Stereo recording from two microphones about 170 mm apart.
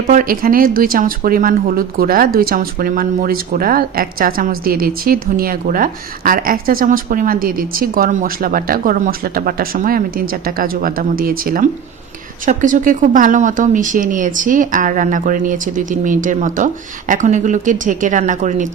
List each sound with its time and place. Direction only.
0.1 s speech: 55° right (ahead or behind)